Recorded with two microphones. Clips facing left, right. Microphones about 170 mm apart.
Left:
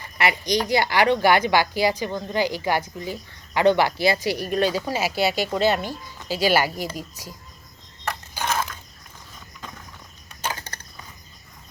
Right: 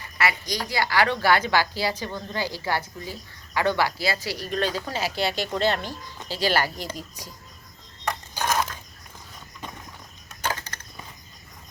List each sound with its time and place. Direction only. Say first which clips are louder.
0.2 s a woman's voice: left 4 dB; 20° left (ahead or behind)